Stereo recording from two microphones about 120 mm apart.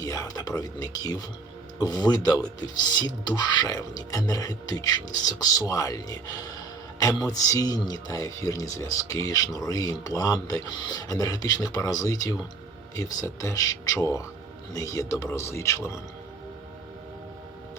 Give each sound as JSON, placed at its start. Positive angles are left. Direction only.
{"t": 0.0, "sound": "speech", "side_deg": 30}